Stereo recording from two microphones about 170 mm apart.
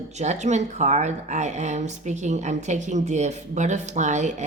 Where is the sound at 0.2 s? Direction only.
45° right (ahead or behind).